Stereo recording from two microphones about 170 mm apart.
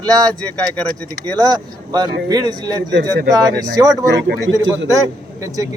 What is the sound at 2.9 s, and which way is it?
Speech, 90° right.